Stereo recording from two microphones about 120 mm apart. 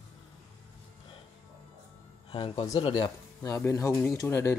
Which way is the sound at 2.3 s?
45° left (ahead or behind).